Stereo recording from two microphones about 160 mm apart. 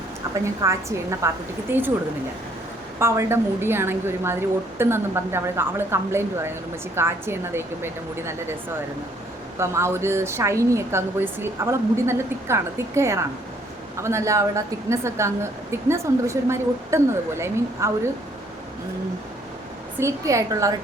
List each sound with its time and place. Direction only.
0.4 s speech: 20° right (ahead or behind)
3.0 s speech: 15° right (ahead or behind)
9.6 s speech: 15° right (ahead or behind)
20.0 s a woman's voice: 20° right (ahead or behind)